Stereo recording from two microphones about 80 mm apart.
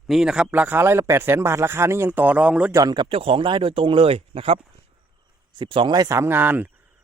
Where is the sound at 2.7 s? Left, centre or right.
Right.